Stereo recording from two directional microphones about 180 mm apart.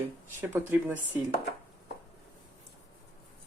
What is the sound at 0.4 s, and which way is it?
Speech, 10° right (ahead or behind).